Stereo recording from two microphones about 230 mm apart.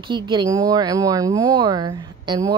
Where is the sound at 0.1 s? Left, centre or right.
Centre.